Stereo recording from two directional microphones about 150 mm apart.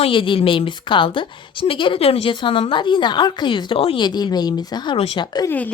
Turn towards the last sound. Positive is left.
turn(degrees=10)  # may be behind; listen again after turning